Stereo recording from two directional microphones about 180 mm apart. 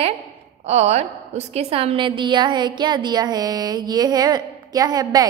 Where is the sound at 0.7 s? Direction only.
35° right (ahead or behind).